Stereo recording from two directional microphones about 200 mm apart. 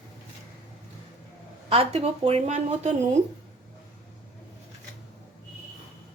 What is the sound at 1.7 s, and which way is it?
A woman's voice, 30° right (ahead or behind).